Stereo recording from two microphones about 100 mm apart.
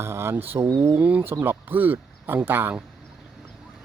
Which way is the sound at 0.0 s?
25° right (ahead or behind).